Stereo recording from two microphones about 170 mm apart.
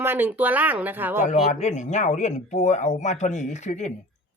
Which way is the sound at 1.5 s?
45° left (ahead or behind).